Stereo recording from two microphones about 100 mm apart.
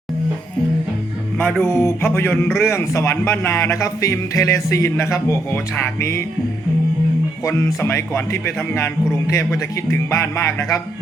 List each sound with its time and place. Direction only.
1.4 s music: 15° left (ahead or behind)
1.8 s a man's voice: 25° left (ahead or behind)
7.4 s a man's voice: 30° left (ahead or behind)